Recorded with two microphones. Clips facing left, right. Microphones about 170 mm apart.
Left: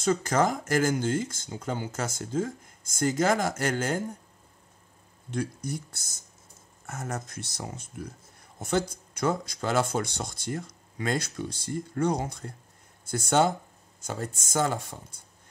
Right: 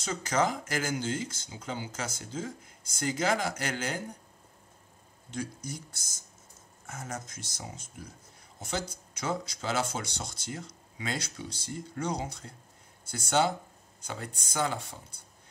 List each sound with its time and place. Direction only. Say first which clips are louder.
0.0 s speech: left 5 dB; 50° left (ahead or behind)
5.3 s speech: left 5 dB; 60° left (ahead or behind)
6.9 s speech: left 4 dB; 50° left (ahead or behind)